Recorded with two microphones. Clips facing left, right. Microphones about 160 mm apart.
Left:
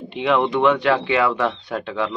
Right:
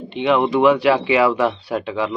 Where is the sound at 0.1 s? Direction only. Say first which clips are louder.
Right 2 dB; centre (ahead or behind).